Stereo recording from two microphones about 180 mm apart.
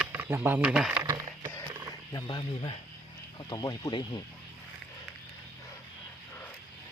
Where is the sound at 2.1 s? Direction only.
25° left (ahead or behind).